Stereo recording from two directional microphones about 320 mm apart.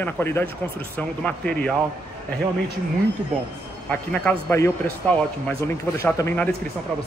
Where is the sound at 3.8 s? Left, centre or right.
Centre.